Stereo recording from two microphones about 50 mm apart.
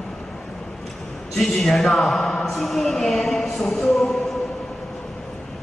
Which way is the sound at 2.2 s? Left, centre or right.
Centre.